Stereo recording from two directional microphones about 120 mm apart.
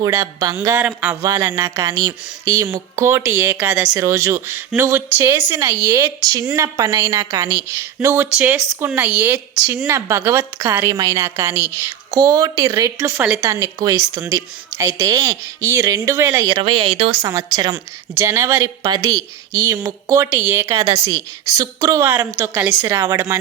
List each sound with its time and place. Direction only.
0.0 s a woman's voice: 25° right (ahead or behind)
0.8 s speech: 10° right (ahead or behind)
1.2 s a woman's voice: 25° right (ahead or behind)
3.9 s a woman's voice: 25° right (ahead or behind)
7.4 s a woman's voice: 15° right (ahead or behind)
16.4 s speech: 45° right (ahead or behind)
17.2 s a woman's voice: 25° right (ahead or behind)
20.8 s a woman's voice: 60° right (ahead or behind)
21.5 s a woman's voice: 30° right (ahead or behind)
22.4 s a woman's voice: 15° right (ahead or behind)